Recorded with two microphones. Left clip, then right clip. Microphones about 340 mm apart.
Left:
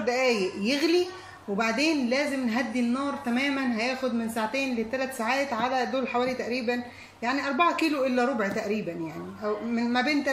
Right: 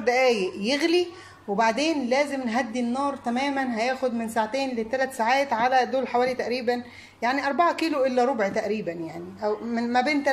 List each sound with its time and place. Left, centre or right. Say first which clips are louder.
0.0 s a woman's voice: right 4 dB; right